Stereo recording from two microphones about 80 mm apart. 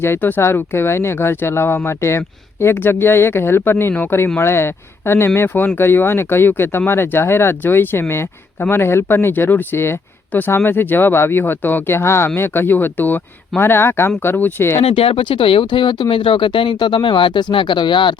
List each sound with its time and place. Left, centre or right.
0.0 s speech: left
15.2 s speech: left